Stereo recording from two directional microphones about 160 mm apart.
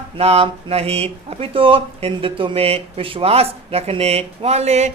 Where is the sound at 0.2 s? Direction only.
35° right (ahead or behind).